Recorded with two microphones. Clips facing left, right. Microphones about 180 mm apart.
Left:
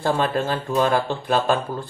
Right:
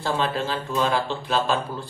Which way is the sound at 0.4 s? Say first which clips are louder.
Left 4 dB; 50° left (ahead or behind).